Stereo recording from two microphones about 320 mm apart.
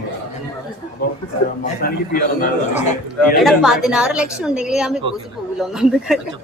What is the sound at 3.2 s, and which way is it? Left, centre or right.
A woman's voice, centre.